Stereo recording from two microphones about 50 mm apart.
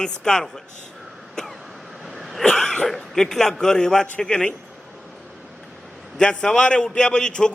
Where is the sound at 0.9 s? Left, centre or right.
Centre.